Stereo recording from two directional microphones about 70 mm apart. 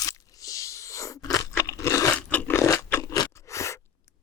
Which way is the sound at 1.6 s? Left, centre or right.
Left.